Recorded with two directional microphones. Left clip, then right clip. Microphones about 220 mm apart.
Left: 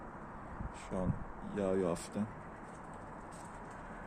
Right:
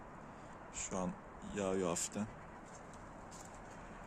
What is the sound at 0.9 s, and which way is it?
Speech, 10° right (ahead or behind).